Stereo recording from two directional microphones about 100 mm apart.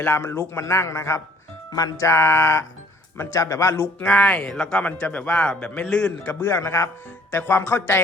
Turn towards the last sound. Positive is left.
turn(degrees=25)  # may be behind; listen again after turning